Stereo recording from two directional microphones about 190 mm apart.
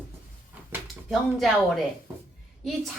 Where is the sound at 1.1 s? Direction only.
Centre (ahead or behind).